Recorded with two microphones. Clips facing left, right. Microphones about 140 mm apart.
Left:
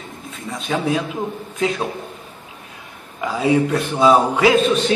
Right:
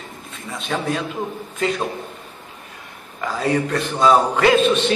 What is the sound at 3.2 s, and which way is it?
A man's voice, 10° left (ahead or behind).